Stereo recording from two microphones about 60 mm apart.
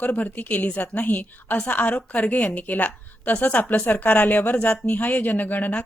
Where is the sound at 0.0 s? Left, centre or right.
Left.